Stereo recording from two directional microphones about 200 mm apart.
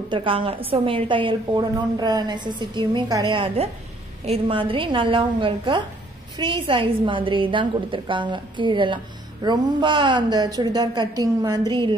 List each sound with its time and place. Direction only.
0.1 s a woman's voice: 25° right (ahead or behind)